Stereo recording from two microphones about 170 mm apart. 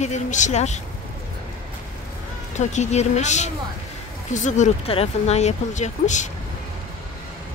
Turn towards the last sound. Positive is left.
turn(degrees=45)  # may be behind; listen again after turning